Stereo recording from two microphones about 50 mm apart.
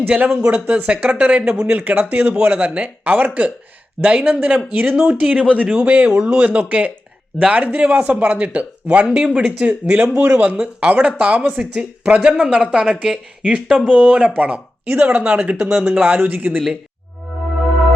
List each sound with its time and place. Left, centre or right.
0.4 s speech: right
16.0 s speech: right